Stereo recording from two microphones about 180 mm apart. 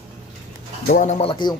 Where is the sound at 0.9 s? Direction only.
40° left (ahead or behind); by 1.6 s 25° left (ahead or behind).